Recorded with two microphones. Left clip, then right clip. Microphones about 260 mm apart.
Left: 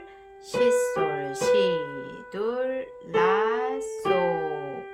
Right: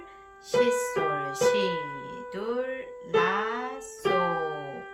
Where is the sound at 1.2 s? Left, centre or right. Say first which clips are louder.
Left 3 dB; left.